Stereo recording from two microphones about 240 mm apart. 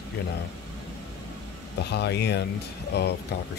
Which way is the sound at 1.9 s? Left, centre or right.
Left.